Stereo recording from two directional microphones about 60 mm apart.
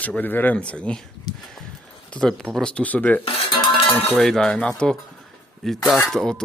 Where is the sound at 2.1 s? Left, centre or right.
Centre.